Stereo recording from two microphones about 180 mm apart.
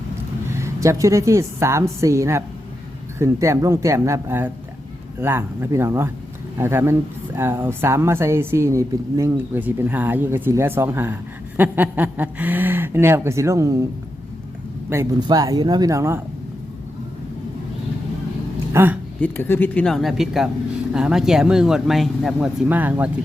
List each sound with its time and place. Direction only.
0.5 s a woman's voice: 15° right (ahead or behind)
14.8 s speech: 20° right (ahead or behind)
18.7 s speech: 10° right (ahead or behind)
19.2 s speech: 10° left (ahead or behind); by 23.0 s 10° right (ahead or behind)